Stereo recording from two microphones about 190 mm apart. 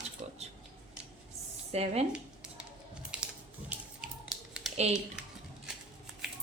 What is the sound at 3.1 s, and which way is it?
Music, 5° right (ahead or behind).